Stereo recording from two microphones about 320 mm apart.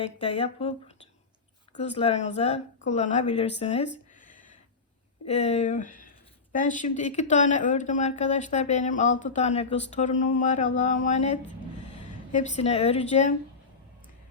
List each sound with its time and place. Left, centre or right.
0.0 s speech: centre
1.8 s a woman's voice: centre
3.9 s a sound: left
5.2 s a woman's voice: centre